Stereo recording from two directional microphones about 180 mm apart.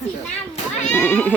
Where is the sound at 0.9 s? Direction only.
10° left (ahead or behind).